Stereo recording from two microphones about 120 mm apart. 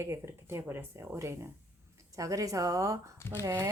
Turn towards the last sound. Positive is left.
turn(degrees=-25)  # may be behind; listen again after turning